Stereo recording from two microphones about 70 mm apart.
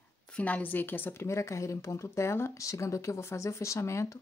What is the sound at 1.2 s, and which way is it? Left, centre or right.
Speech, left.